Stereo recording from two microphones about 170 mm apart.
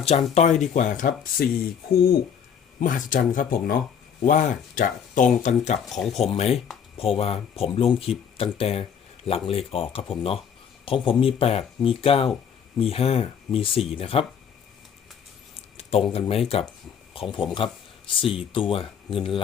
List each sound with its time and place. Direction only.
0.0 s speech: 40° left (ahead or behind); by 1.5 s 55° left (ahead or behind)
2.8 s speech: 55° left (ahead or behind); by 14.3 s 35° left (ahead or behind)
15.8 s speech: 35° left (ahead or behind)